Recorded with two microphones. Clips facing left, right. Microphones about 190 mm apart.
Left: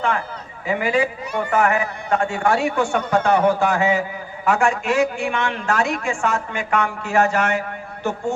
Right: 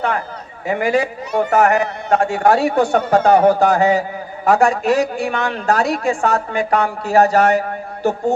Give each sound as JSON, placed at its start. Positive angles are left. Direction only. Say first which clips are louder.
{"t": 0.7, "sound": "a woman's voice", "louder": "right 3 dB", "side_deg": -40}